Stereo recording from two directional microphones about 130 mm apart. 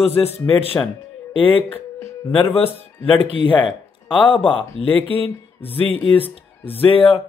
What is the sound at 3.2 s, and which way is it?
Speech, 40° left (ahead or behind).